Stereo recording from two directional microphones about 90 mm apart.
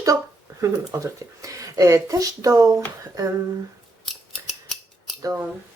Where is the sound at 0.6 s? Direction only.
40° right (ahead or behind).